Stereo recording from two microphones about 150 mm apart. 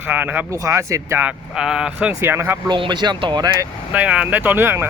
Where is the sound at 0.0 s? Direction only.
10° right (ahead or behind).